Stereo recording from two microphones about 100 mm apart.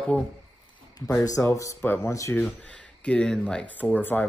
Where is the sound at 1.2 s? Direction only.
35° left (ahead or behind).